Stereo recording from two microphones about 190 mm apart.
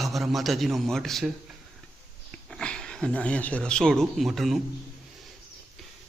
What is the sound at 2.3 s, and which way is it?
A man's voice, 5° left (ahead or behind).